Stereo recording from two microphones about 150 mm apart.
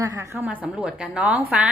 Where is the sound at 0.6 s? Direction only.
5° right (ahead or behind).